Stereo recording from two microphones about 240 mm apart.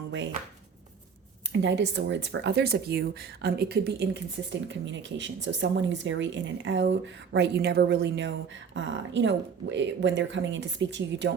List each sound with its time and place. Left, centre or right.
1.5 s speech: right